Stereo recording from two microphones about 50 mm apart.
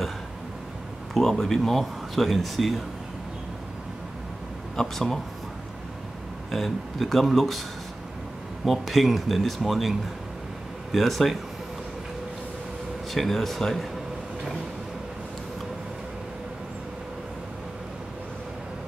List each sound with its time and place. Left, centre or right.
1.1 s speech: centre
4.7 s speech: centre
6.5 s speech: centre
8.6 s speech: centre
13.1 s speech: centre